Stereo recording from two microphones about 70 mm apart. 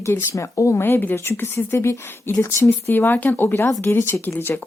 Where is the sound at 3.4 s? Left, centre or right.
Left.